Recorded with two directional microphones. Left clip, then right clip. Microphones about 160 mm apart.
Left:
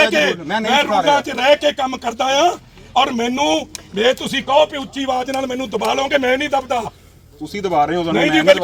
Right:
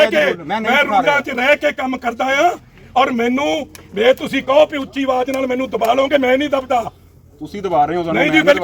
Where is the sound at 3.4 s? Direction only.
30° left (ahead or behind).